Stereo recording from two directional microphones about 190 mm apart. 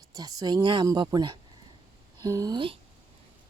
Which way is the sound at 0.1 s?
20° right (ahead or behind).